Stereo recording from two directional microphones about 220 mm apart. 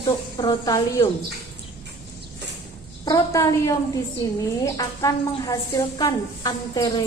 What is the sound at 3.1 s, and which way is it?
A woman's voice, 15° left (ahead or behind).